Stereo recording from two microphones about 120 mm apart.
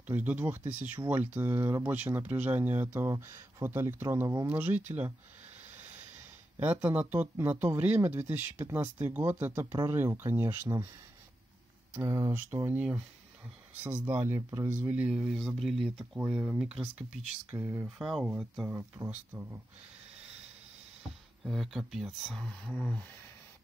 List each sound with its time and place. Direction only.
0.0 s speech: 15° right (ahead or behind)
6.6 s speech: 15° right (ahead or behind)
12.0 s speech: 35° right (ahead or behind)
12.3 s speech: 15° right (ahead or behind)
14.0 s speech: 20° right (ahead or behind); by 16.1 s centre (ahead or behind)
16.2 s speech: 15° right (ahead or behind)
17.8 s speech: 5° right (ahead or behind)
18.8 s speech: 20° right (ahead or behind)
21.5 s speech: centre (ahead or behind)